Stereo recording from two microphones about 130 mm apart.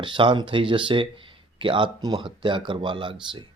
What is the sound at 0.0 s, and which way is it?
Speech, 40° right (ahead or behind).